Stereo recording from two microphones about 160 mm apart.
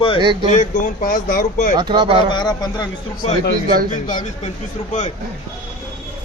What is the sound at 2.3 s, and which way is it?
Speech, 25° left (ahead or behind).